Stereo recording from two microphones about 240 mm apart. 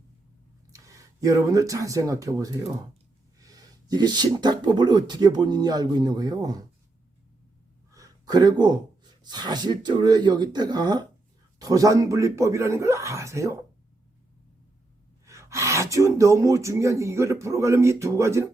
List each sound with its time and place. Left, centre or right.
0.7 s speech: centre
7.9 s speech: centre
15.3 s speech: centre